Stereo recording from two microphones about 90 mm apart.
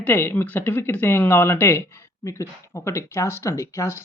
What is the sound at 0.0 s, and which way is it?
Speech, 20° left (ahead or behind).